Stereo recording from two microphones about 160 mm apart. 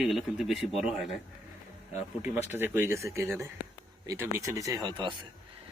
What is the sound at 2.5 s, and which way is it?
Speech, 15° right (ahead or behind).